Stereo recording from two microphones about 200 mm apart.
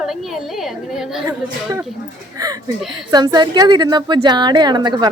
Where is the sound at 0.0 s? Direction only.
Centre (ahead or behind).